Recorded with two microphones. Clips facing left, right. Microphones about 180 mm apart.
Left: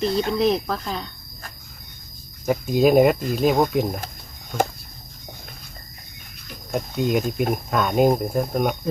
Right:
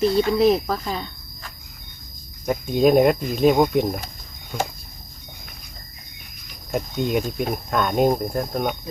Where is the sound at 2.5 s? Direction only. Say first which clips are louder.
Even; 5° left (ahead or behind).